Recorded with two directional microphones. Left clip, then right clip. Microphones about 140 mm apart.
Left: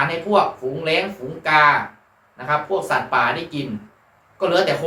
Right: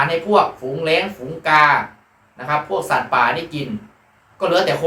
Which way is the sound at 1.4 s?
25° right (ahead or behind).